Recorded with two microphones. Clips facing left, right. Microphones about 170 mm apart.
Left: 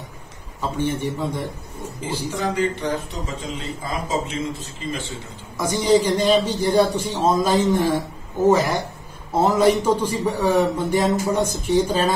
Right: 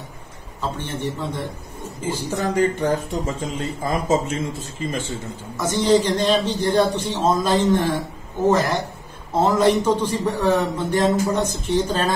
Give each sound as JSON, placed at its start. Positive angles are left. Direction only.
{"t": 0.6, "sound": "a man's voice", "side_deg": 10}
{"t": 2.0, "sound": "a man's voice", "side_deg": -45}
{"t": 5.6, "sound": "a man's voice", "side_deg": 10}